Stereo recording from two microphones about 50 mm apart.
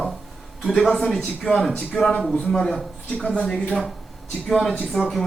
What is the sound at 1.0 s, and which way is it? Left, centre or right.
Speech, centre.